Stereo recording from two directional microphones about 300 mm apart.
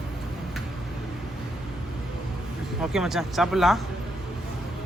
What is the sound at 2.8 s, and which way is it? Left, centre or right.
Speech, centre.